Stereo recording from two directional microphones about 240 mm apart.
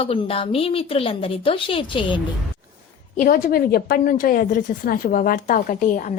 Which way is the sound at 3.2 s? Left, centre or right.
Left.